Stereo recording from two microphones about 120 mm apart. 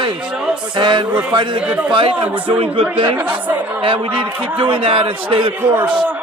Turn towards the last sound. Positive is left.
turn(degrees=-15)  # may be behind; listen again after turning